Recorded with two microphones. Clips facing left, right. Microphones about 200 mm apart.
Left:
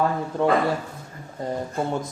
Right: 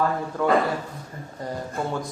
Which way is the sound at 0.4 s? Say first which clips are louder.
Left 1 dB; 25° left (ahead or behind).